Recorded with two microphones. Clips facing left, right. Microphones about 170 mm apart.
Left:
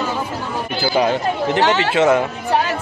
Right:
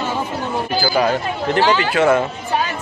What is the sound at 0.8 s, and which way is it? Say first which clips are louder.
Speech: left 2 dB; 20° left (ahead or behind).